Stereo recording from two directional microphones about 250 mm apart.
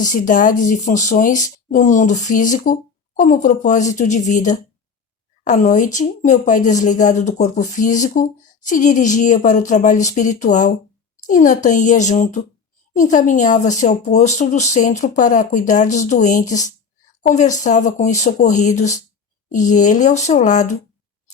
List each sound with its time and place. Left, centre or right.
0.0 s speech: left